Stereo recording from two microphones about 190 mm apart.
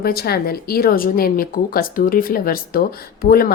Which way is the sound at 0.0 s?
55° left (ahead or behind).